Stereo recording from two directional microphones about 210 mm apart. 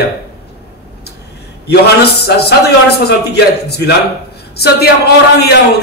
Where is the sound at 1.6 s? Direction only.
50° left (ahead or behind).